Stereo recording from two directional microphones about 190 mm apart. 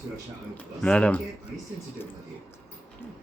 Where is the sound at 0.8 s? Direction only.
5° left (ahead or behind).